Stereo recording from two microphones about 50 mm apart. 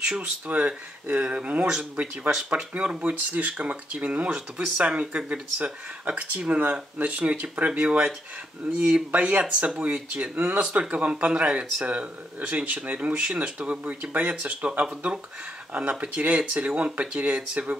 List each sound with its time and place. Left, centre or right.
0.2 s speech: right